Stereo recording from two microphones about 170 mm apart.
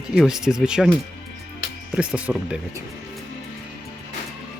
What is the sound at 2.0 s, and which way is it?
Speech, 5° right (ahead or behind).